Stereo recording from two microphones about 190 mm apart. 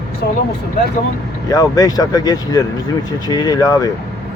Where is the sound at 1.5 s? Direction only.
20° left (ahead or behind).